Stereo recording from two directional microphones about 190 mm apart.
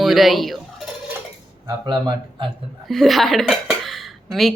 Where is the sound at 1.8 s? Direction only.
25° right (ahead or behind).